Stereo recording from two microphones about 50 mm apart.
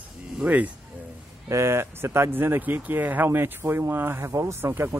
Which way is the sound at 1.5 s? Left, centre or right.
Right.